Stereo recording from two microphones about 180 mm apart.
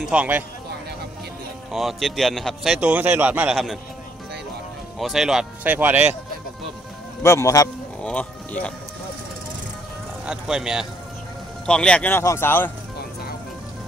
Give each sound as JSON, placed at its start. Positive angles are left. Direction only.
{"t": 0.0, "sound": "speech", "side_deg": -5}
{"t": 1.7, "sound": "a man's voice", "side_deg": 0}
{"t": 4.9, "sound": "a man's voice", "side_deg": 0}
{"t": 7.2, "sound": "speech", "side_deg": 15}
{"t": 8.0, "sound": "speech", "side_deg": 5}
{"t": 10.2, "sound": "a man's voice", "side_deg": -5}